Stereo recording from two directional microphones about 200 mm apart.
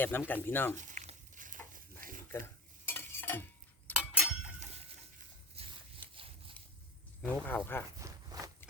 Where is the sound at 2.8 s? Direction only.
10° left (ahead or behind).